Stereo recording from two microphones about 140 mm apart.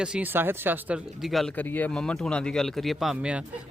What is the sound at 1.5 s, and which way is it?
Speech, 10° left (ahead or behind).